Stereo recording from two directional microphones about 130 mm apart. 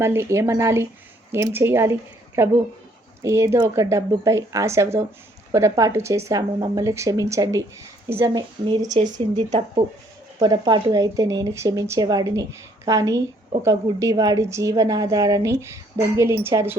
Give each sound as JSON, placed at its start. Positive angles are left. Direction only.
{"t": 0.0, "sound": "a woman's voice", "side_deg": -20}
{"t": 8.3, "sound": "speech", "side_deg": -35}
{"t": 9.5, "sound": "speech", "side_deg": -55}
{"t": 10.4, "sound": "a woman's voice", "side_deg": -35}